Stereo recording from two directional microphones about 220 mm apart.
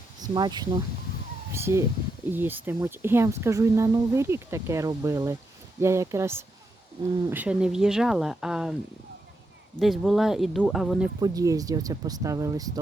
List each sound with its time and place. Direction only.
0.2 s speech: 20° right (ahead or behind); by 8.7 s centre (ahead or behind)
9.7 s speech: centre (ahead or behind)
11.2 s speech: 15° right (ahead or behind)